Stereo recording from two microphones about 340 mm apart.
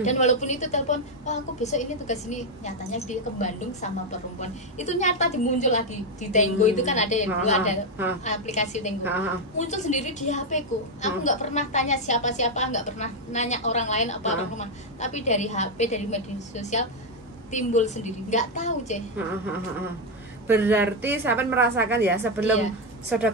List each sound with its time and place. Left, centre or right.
0.0 s a woman's voice: left
20.4 s a woman's voice: centre